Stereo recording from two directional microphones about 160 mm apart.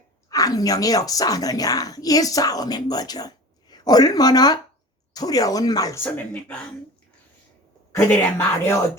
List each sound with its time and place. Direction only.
0.3 s a woman's voice: 20° left (ahead or behind)
7.9 s speech: 15° left (ahead or behind)